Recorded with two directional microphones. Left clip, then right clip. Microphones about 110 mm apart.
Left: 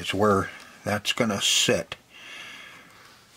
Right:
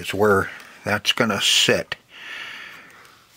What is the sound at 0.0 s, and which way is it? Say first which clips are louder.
Speech: right 4 dB; 20° right (ahead or behind).